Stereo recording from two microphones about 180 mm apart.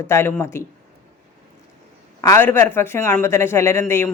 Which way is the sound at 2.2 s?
15° left (ahead or behind).